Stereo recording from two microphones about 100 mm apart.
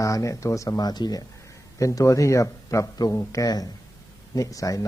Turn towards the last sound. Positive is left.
turn(degrees=35)  # may be behind; listen again after turning